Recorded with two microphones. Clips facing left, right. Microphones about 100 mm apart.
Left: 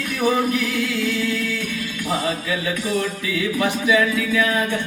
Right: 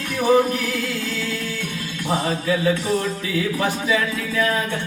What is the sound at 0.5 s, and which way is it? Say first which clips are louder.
Speech: left 2 dB; 35° right (ahead or behind).